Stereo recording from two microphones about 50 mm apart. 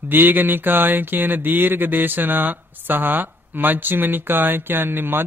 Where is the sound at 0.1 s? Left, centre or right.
Right.